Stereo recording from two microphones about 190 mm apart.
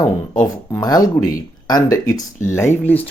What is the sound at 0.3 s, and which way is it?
Speech, 20° left (ahead or behind).